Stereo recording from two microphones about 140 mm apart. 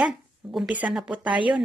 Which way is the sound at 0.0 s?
Centre (ahead or behind).